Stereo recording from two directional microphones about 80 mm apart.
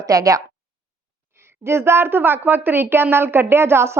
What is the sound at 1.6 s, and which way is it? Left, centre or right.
A woman's voice, right.